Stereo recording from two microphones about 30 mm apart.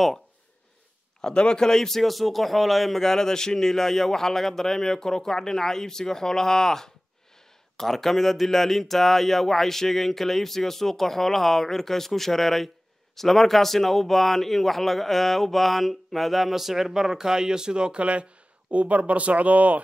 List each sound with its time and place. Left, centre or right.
1.2 s a man's voice: left
1.7 s a man's voice: centre
3.0 s speech: centre; by 19.8 s right